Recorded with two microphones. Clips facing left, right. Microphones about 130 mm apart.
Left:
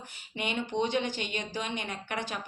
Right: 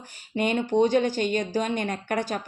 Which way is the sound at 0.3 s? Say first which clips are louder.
Right 9 dB; 45° right (ahead or behind).